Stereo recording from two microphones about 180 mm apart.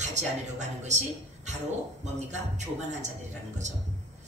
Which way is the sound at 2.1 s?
40° right (ahead or behind).